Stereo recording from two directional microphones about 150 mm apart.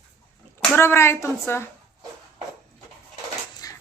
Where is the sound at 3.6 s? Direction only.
25° left (ahead or behind).